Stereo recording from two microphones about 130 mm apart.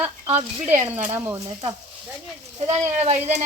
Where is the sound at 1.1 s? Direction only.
15° right (ahead or behind).